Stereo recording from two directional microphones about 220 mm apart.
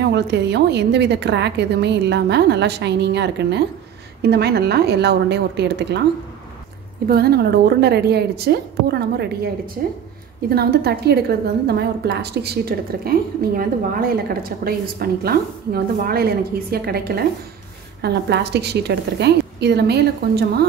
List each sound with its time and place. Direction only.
0.0 s a woman's voice: 50° right (ahead or behind)
7.1 s a woman's voice: 45° right (ahead or behind)